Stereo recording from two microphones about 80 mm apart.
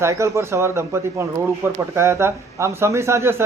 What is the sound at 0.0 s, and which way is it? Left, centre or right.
A man's voice, right.